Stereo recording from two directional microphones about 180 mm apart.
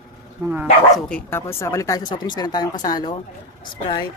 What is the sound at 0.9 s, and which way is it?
Speech, 10° left (ahead or behind).